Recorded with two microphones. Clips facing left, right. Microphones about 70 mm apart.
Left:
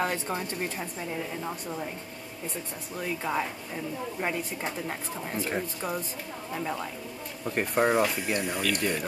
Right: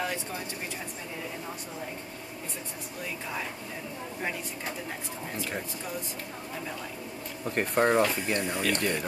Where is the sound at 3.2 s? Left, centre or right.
Left.